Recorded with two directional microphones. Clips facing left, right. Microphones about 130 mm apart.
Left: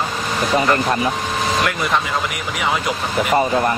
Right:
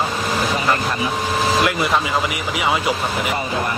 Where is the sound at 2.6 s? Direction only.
5° right (ahead or behind).